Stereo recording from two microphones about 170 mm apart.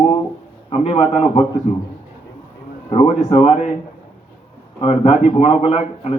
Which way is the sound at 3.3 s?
40° left (ahead or behind).